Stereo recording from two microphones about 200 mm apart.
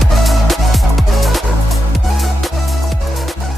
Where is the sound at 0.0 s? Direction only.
Centre (ahead or behind).